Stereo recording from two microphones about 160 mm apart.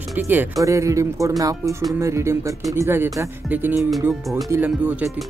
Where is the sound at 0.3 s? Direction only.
15° right (ahead or behind).